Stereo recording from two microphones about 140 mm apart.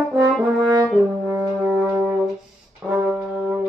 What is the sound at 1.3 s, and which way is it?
French horn, 10° right (ahead or behind).